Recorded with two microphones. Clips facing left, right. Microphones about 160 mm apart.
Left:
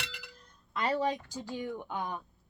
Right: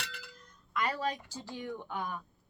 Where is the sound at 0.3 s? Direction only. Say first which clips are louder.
Right 2 dB; 30° left (ahead or behind).